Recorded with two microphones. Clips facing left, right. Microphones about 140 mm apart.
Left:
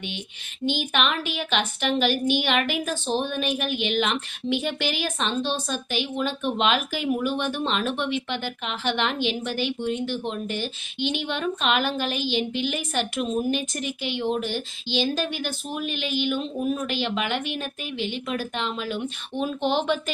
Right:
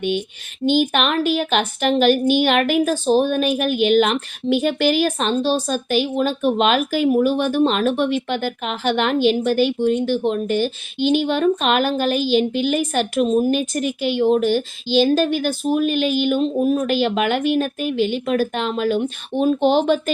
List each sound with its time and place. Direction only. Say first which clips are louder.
0.6 s speech: right 7 dB; 45° right (ahead or behind)